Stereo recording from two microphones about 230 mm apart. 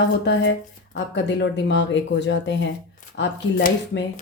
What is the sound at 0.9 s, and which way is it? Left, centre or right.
Speech, left.